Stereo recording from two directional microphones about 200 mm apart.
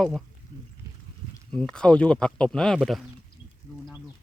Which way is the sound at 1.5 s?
5° left (ahead or behind).